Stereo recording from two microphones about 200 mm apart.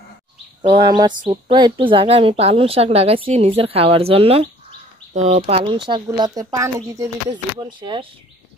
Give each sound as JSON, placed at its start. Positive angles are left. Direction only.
{"t": 0.6, "sound": "speech", "side_deg": -25}